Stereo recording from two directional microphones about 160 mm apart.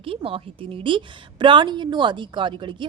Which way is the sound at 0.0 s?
35° right (ahead or behind).